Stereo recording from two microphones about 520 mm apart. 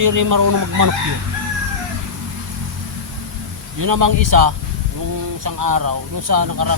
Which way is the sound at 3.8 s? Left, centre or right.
Right.